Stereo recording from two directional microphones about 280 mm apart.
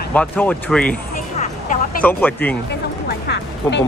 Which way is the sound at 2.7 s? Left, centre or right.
Left.